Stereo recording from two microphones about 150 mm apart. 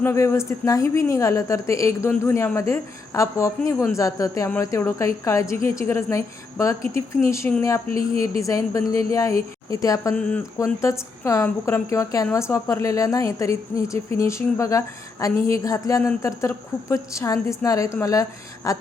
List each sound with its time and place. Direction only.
0.0 s a woman's voice: 15° left (ahead or behind)
10.2 s speech: 10° left (ahead or behind)
10.6 s a woman's voice: 20° left (ahead or behind)